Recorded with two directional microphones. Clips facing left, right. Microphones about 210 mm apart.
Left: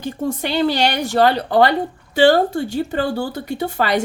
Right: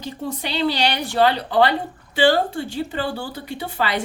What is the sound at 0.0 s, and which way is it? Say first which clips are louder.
Speech: left 6 dB; 50° left (ahead or behind).